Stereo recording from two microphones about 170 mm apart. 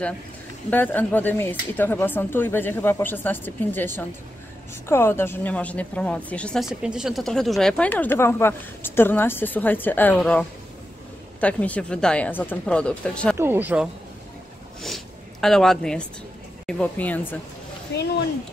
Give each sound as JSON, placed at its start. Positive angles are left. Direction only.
{"t": 0.7, "sound": "a woman's voice", "side_deg": 10}
{"t": 11.4, "sound": "a woman's voice", "side_deg": 10}
{"t": 13.4, "sound": "speech", "side_deg": -10}
{"t": 15.4, "sound": "a woman's voice", "side_deg": 5}
{"t": 17.9, "sound": "speech", "side_deg": 90}